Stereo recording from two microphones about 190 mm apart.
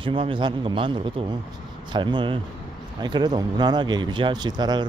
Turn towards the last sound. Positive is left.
turn(degrees=-20)  # may be behind; listen again after turning